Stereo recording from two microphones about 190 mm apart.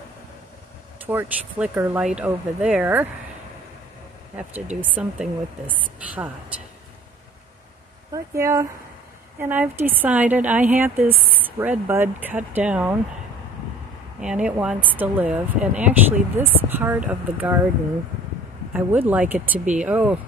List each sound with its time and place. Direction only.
0.9 s speech: 10° right (ahead or behind)
4.4 s speech: 5° right (ahead or behind)
8.1 s speech: 15° right (ahead or behind)
14.2 s speech: 5° right (ahead or behind)
18.7 s speech: 10° right (ahead or behind)